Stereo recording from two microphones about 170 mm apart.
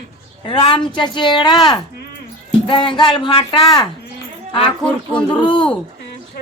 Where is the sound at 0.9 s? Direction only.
25° left (ahead or behind).